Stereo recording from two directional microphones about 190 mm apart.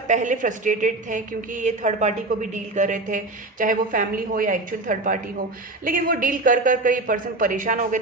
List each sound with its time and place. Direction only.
0.1 s a woman's voice: 40° right (ahead or behind)